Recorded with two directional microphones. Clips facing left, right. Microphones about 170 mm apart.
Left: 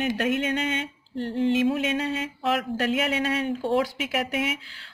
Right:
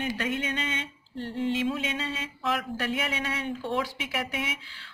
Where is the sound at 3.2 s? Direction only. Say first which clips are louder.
Left 6 dB; 45° left (ahead or behind).